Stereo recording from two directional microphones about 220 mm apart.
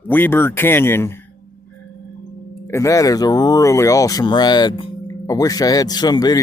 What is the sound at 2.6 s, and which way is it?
Speech, 15° left (ahead or behind).